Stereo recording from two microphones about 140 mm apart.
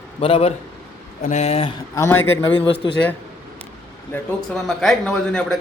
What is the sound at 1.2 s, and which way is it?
Speech, 55° left (ahead or behind).